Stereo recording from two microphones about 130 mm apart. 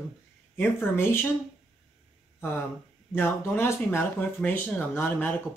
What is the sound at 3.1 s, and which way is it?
Speech, 15° left (ahead or behind).